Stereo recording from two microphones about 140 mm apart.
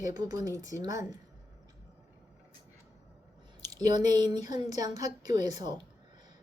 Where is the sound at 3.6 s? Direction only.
30° right (ahead or behind).